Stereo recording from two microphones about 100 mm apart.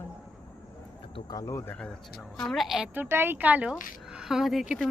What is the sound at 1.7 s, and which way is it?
Speech, 10° left (ahead or behind).